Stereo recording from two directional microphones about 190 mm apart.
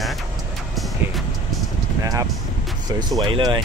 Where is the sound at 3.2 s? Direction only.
25° right (ahead or behind).